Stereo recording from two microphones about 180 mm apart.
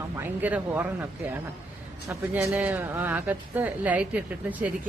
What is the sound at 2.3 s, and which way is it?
Speech, 10° right (ahead or behind).